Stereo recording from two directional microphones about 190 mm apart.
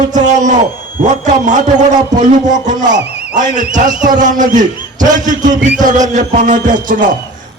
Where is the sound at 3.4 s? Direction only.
40° right (ahead or behind).